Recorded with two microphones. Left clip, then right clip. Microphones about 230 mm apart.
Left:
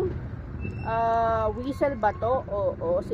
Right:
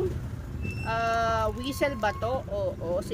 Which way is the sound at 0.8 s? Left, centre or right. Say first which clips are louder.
Left 3 dB; right.